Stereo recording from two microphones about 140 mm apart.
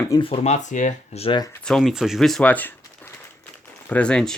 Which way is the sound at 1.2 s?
35° left (ahead or behind).